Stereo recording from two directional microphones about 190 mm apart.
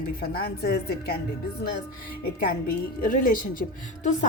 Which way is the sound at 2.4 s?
50° left (ahead or behind).